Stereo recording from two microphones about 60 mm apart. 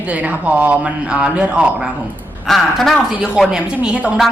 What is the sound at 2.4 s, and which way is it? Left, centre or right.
Speech, centre.